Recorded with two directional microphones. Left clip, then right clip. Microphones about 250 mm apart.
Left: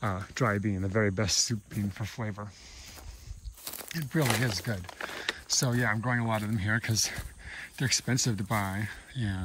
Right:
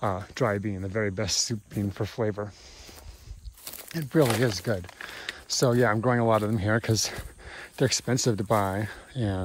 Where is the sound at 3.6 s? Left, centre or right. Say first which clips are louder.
Right 2 dB; centre.